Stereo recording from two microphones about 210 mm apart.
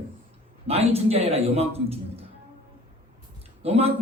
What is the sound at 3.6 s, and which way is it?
Speech, 30° right (ahead or behind).